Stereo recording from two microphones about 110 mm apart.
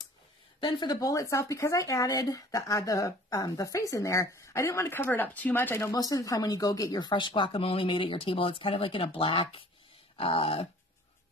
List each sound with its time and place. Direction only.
0.6 s speech: 45° left (ahead or behind)
0.9 s speech: 30° left (ahead or behind)
5.9 s speech: 35° left (ahead or behind); by 9.7 s 55° left (ahead or behind)
10.1 s a sound: 55° left (ahead or behind)